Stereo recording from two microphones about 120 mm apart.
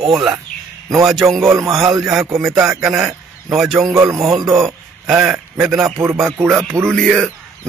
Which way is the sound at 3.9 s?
25° right (ahead or behind).